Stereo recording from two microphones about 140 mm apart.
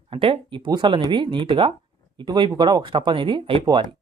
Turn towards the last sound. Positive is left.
turn(degrees=-40)  # may be behind; listen again after turning